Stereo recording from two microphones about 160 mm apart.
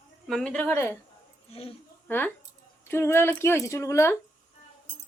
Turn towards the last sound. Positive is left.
turn(degrees=15)  # may be behind; listen again after turning